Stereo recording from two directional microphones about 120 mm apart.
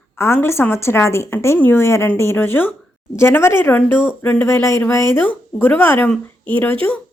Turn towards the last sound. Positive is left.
turn(degrees=10)  # may be behind; listen again after turning